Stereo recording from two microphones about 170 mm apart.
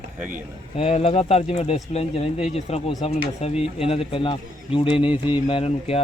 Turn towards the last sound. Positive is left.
turn(degrees=35)  # may be behind; listen again after turning